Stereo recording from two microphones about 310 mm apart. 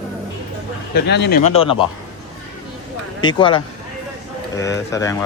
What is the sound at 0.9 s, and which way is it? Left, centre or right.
Speech, left.